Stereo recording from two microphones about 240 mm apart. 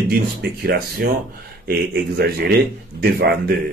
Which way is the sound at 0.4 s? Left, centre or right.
Right.